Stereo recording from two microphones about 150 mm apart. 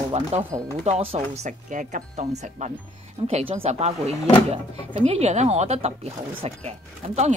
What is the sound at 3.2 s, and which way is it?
Speech, 40° right (ahead or behind).